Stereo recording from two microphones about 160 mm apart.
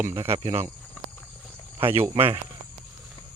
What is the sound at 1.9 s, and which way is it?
Speech, 15° right (ahead or behind).